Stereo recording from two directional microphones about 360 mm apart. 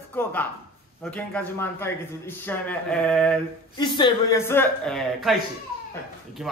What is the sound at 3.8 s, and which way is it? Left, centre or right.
Speech, centre.